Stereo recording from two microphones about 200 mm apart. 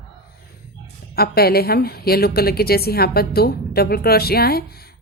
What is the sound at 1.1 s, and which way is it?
A woman's voice, 50° left (ahead or behind).